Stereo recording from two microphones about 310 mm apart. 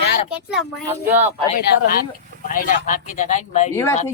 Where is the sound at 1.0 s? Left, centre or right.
Right.